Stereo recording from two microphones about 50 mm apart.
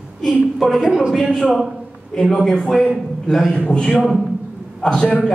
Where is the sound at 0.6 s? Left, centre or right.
Centre.